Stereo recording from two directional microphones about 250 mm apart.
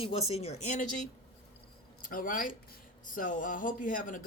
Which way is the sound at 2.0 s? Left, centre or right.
Left.